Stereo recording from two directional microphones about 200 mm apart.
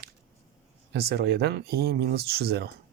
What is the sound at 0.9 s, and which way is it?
Speech, 55° right (ahead or behind).